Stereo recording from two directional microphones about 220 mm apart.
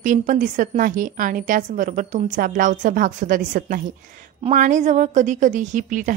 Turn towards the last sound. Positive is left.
turn(degrees=-35)  # may be behind; listen again after turning